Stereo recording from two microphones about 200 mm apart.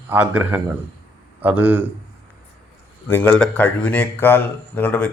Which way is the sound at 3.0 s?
10° left (ahead or behind).